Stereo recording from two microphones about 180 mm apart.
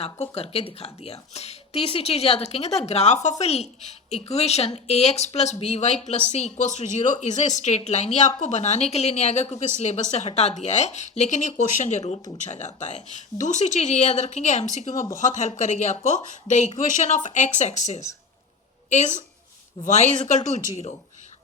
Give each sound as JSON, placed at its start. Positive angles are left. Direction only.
{"t": 0.0, "sound": "a woman's voice", "side_deg": 35}